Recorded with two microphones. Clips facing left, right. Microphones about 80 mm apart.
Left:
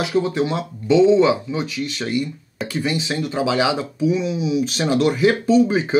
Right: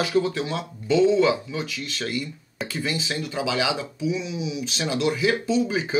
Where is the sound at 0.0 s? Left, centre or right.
Centre; by 5.8 s left.